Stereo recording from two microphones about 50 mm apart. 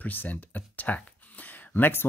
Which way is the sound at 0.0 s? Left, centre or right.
Left.